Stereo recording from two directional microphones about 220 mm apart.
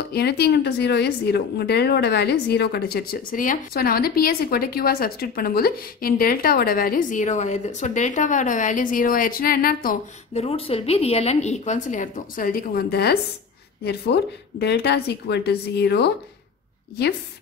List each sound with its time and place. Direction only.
0.1 s speech: 45° left (ahead or behind)
10.3 s speech: 25° left (ahead or behind); by 13.2 s 45° left (ahead or behind)
14.6 s speech: 50° left (ahead or behind)